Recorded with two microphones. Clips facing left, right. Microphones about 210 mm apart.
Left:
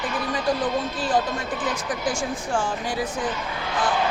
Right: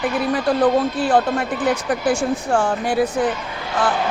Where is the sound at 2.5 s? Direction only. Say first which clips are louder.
Right 6 dB; 65° right (ahead or behind).